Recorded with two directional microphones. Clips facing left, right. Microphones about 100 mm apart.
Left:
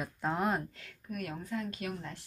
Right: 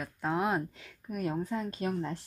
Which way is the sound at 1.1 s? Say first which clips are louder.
Right 5 dB; 30° right (ahead or behind).